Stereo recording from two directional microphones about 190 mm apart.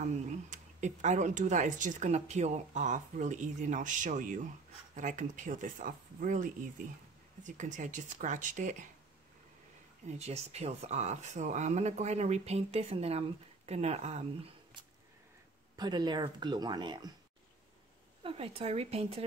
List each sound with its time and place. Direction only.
0.0 s speech: 40° right (ahead or behind)
10.0 s speech: 35° right (ahead or behind)
15.7 s speech: 20° right (ahead or behind)
18.2 s speech: 30° right (ahead or behind)